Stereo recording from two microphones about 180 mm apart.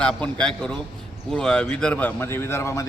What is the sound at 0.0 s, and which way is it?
A man's voice, 5° left (ahead or behind).